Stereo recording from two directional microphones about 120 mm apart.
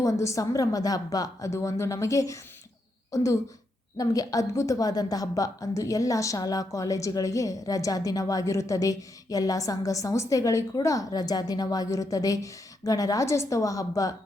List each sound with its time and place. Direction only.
0.0 s a woman's voice: 25° left (ahead or behind)